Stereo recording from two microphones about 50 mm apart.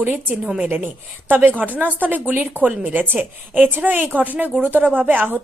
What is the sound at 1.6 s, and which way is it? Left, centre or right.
A woman's voice, right.